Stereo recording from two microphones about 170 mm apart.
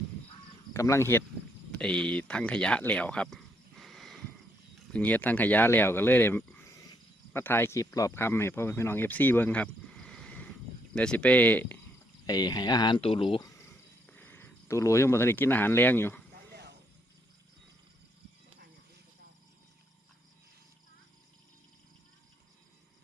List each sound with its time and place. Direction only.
0.7 s speech: 15° left (ahead or behind)
12.2 s speech: 20° left (ahead or behind)
14.1 s speech: 10° left (ahead or behind)
16.3 s a sound: 65° right (ahead or behind)